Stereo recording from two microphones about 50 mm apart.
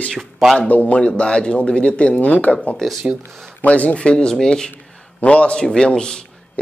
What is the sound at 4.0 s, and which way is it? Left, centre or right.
Speech, centre.